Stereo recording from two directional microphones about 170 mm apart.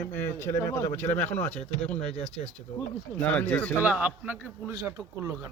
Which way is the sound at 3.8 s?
10° right (ahead or behind).